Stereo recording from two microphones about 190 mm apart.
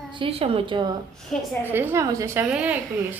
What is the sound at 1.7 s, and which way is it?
A woman's voice, 10° right (ahead or behind).